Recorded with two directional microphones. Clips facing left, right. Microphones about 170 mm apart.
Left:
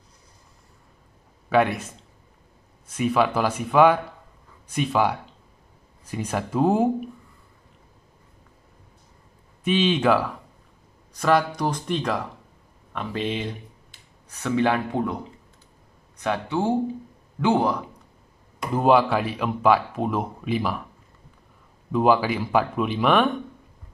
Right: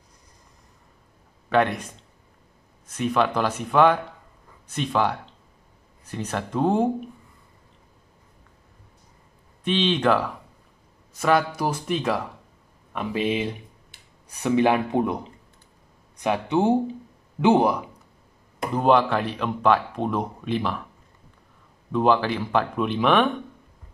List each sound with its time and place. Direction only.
1.5 s speech: 5° left (ahead or behind)
9.7 s speech: 5° left (ahead or behind); by 15.1 s 20° right (ahead or behind)
16.2 s speech: 15° right (ahead or behind)
18.8 s speech: 5° left (ahead or behind)
21.9 s speech: 5° left (ahead or behind)